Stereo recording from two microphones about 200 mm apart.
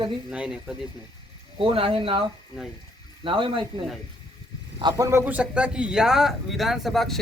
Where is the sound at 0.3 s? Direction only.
5° right (ahead or behind).